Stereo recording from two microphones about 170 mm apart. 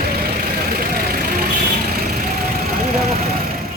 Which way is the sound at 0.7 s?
60° right (ahead or behind).